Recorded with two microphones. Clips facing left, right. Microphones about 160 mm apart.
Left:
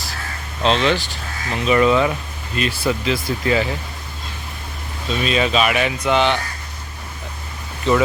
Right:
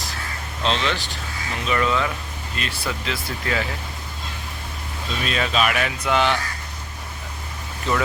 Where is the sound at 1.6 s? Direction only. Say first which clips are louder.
Left 7 dB; 10° left (ahead or behind).